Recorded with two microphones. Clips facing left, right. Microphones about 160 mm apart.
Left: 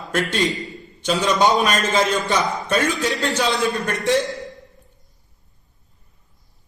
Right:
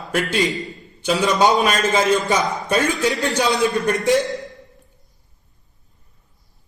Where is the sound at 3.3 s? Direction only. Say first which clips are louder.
Right 2 dB; 20° right (ahead or behind).